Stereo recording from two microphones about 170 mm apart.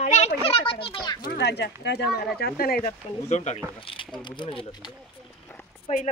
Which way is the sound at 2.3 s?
65° left (ahead or behind).